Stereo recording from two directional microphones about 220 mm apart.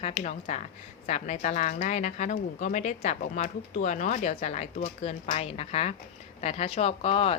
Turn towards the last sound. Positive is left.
turn(degrees=25)  # may be behind; listen again after turning